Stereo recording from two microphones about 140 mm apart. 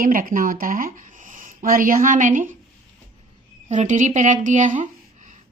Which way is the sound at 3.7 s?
60° right (ahead or behind).